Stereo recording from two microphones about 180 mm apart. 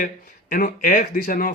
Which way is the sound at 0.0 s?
50° left (ahead or behind).